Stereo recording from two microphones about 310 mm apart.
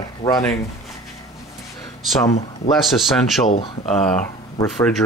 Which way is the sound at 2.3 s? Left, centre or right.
Left.